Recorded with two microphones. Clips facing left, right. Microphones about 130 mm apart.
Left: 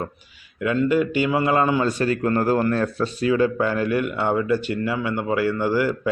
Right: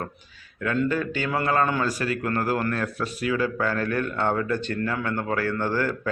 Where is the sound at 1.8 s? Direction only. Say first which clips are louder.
Left 5 dB; 25° left (ahead or behind).